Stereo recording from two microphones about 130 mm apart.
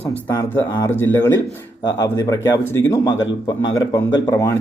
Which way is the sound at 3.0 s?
30° left (ahead or behind).